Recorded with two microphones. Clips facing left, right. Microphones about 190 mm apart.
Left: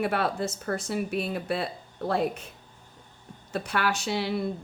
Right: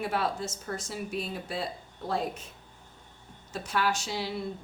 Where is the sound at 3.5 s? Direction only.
65° left (ahead or behind).